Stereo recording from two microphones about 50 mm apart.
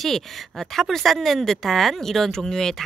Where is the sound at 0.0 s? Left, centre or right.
Centre.